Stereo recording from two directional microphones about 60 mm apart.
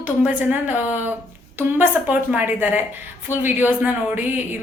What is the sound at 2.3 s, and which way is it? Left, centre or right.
A woman's voice, right.